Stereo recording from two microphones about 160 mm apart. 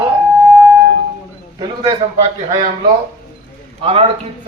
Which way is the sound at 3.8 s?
35° right (ahead or behind).